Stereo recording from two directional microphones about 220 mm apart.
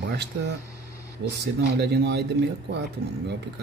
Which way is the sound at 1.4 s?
50° right (ahead or behind).